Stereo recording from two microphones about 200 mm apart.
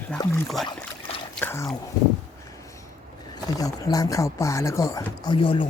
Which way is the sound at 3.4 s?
20° left (ahead or behind).